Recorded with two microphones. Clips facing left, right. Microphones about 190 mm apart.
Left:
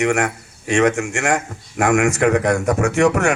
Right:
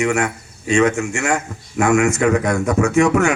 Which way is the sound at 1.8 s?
80° left.